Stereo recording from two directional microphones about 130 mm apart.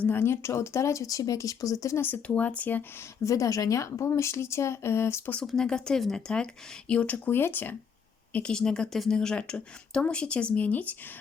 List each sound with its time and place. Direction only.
0.0 s speech: 15° left (ahead or behind)
3.2 s speech: 25° left (ahead or behind)
5.4 s speech: 5° left (ahead or behind)